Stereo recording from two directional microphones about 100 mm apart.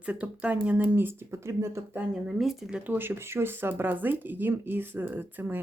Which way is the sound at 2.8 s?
20° right (ahead or behind).